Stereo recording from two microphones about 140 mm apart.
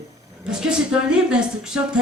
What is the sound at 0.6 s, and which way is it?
Speech, 5° right (ahead or behind).